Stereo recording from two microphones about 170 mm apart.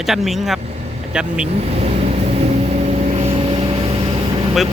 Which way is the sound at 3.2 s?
35° right (ahead or behind).